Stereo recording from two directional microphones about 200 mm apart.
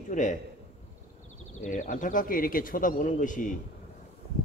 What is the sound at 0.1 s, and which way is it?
Speech, 40° left (ahead or behind).